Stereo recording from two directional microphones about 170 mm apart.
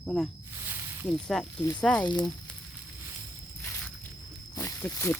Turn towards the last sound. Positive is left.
turn(degrees=15)  # may be behind; listen again after turning